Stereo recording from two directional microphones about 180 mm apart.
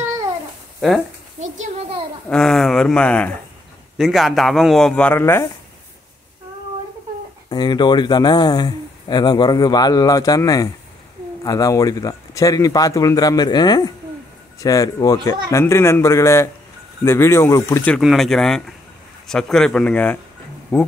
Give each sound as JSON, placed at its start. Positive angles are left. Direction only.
{"t": 0.7, "sound": "speech", "side_deg": 0}
{"t": 1.4, "sound": "a sound", "side_deg": -40}
{"t": 2.2, "sound": "a man's voice", "side_deg": 5}
{"t": 7.4, "sound": "speech", "side_deg": 25}
{"t": 18.0, "sound": "a man's voice", "side_deg": 0}